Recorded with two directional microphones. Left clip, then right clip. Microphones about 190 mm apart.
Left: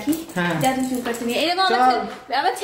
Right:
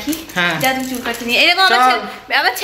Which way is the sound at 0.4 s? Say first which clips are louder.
Right 9 dB; 30° left (ahead or behind).